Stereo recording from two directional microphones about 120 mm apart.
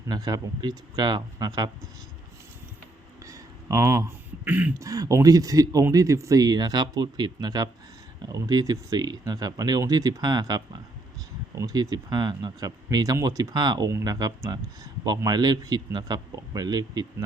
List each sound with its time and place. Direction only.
0.1 s speech: 35° right (ahead or behind)
3.2 s a sound: 25° right (ahead or behind)
4.4 s throat clearing: 15° right (ahead or behind)
4.8 s speech: 30° right (ahead or behind)